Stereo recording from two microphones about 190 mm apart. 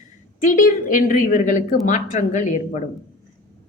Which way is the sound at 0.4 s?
45° left (ahead or behind).